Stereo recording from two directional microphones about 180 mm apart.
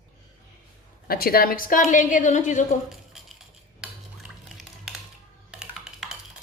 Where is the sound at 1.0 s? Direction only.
55° left (ahead or behind).